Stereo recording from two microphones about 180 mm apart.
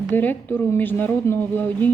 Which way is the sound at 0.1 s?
10° left (ahead or behind).